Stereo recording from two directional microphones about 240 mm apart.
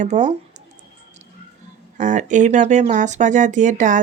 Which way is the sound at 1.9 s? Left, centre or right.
Right.